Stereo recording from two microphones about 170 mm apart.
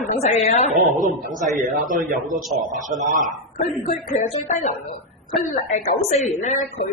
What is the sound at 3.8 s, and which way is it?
Speech, 50° left (ahead or behind).